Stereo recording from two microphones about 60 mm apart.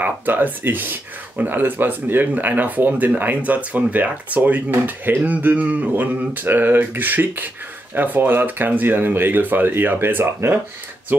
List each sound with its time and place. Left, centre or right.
0.0 s speech: right
2.9 s speech: centre
3.2 s speech: right